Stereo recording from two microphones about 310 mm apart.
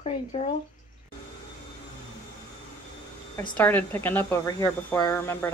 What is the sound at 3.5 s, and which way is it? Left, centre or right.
Speech, centre.